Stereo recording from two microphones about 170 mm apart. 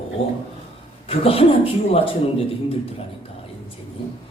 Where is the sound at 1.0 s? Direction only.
35° left (ahead or behind).